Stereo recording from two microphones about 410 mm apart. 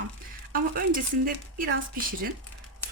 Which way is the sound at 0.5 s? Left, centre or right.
Right.